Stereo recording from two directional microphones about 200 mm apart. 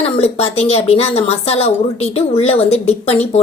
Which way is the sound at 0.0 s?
30° left (ahead or behind).